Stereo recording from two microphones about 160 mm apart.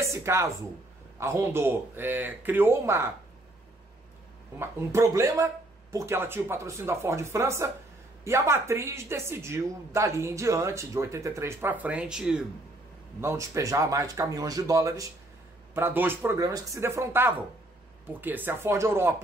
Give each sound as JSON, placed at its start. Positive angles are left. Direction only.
{"t": 0.0, "sound": "a woman's voice", "side_deg": -15}
{"t": 4.6, "sound": "a woman's voice", "side_deg": -15}
{"t": 13.2, "sound": "a woman's voice", "side_deg": -15}